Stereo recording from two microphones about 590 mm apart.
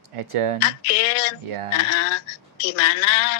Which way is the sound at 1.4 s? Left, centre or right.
Right.